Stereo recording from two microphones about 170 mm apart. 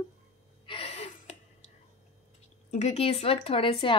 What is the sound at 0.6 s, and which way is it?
Gasp, 35° left (ahead or behind).